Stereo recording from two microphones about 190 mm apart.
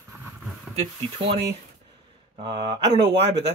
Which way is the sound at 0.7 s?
30° right (ahead or behind).